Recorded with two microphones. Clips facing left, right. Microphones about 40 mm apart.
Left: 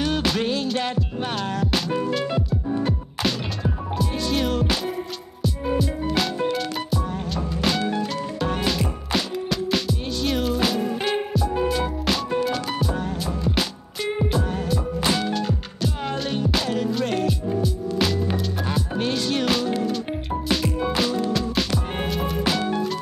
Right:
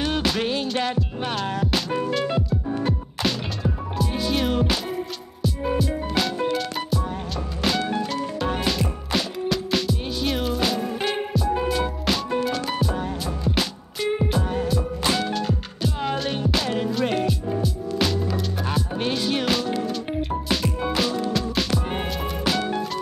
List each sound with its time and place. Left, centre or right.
0.4 s music: centre
0.7 s music: centre
17.0 s music: centre
17.3 s music: centre